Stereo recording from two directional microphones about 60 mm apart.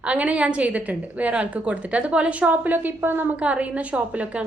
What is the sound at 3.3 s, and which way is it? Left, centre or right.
A woman's voice, right.